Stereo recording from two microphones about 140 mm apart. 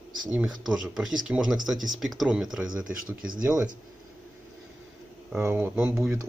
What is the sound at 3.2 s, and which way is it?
Speech, 80° right.